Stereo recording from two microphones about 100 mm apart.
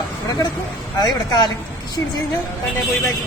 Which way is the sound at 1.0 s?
45° left (ahead or behind).